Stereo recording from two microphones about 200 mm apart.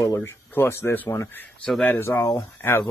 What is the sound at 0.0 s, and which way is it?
A man's voice, 15° left (ahead or behind).